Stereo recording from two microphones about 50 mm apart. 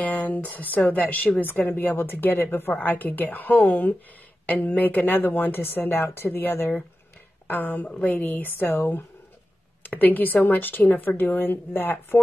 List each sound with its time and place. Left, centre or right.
0.0 s a woman's voice: left